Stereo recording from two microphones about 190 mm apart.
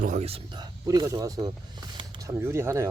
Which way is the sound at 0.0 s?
35° right (ahead or behind).